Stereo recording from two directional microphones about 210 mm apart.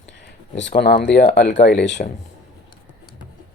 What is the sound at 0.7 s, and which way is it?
Speech, 45° left (ahead or behind).